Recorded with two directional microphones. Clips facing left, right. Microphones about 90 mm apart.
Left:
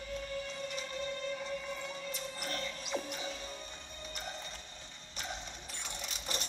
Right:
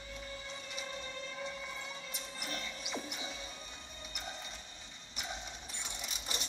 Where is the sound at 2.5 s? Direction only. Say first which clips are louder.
Left 3 dB; 10° right (ahead or behind).